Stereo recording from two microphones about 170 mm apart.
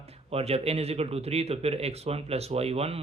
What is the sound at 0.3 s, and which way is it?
Speech, 35° right (ahead or behind).